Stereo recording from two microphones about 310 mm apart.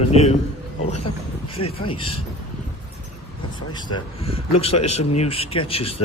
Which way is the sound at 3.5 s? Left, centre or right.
Centre.